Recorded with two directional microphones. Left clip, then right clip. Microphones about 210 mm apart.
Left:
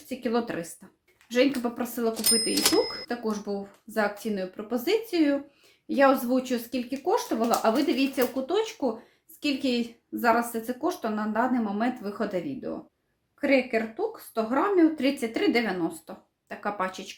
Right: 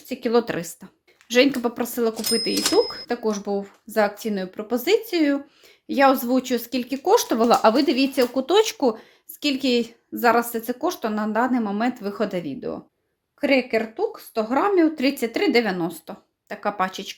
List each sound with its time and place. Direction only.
0.1 s speech: 40° right (ahead or behind)
9.4 s speech: 40° right (ahead or behind)